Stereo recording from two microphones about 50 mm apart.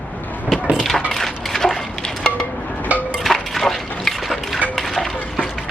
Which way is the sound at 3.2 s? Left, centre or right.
Centre.